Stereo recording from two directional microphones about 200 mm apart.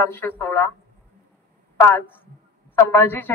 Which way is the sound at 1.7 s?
10° left (ahead or behind).